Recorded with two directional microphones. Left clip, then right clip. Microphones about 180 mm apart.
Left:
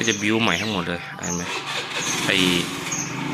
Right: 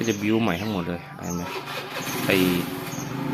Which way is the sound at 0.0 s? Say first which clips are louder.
Left 3 dB; 15° right (ahead or behind).